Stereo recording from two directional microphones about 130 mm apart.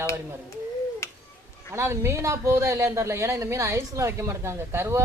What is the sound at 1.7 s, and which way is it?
A man's voice, 20° right (ahead or behind).